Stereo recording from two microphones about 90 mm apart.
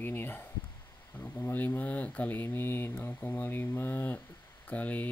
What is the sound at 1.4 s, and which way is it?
Speech, 20° left (ahead or behind).